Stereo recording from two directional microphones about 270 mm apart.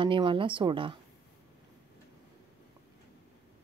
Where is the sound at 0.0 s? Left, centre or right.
Centre.